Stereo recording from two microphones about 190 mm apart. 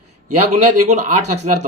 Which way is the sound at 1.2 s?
35° right (ahead or behind).